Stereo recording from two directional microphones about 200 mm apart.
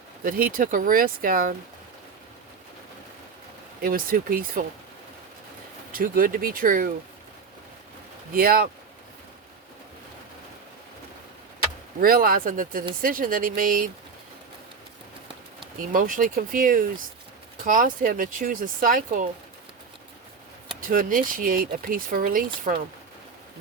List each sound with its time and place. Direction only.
0.3 s speech: 45° right (ahead or behind)
3.8 s speech: 45° right (ahead or behind)
5.9 s speech: 45° right (ahead or behind)
8.3 s speech: 45° right (ahead or behind)
11.9 s speech: 45° right (ahead or behind)
15.9 s speech: 40° right (ahead or behind)
20.9 s speech: 45° right (ahead or behind)